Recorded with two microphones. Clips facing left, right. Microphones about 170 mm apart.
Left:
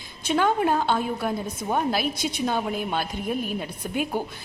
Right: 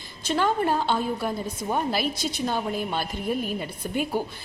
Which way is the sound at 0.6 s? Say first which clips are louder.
Left 1 dB; centre (ahead or behind).